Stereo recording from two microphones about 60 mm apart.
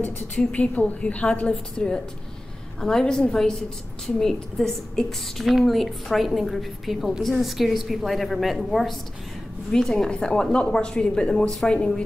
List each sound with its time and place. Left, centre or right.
0.4 s a woman's voice: left